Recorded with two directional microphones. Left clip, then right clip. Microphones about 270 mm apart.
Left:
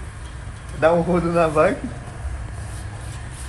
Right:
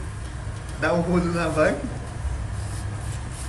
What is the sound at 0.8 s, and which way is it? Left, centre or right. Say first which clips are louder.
Speech: left 6 dB; centre.